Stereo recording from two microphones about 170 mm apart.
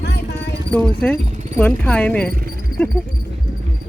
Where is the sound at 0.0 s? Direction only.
80° left.